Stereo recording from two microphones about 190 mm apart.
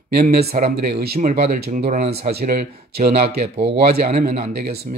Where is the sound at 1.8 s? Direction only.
35° right (ahead or behind).